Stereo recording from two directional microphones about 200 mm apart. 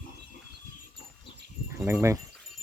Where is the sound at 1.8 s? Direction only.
15° right (ahead or behind).